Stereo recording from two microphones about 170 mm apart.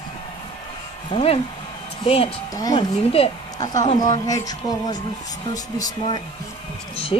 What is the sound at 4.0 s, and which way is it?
Speech, 20° left (ahead or behind).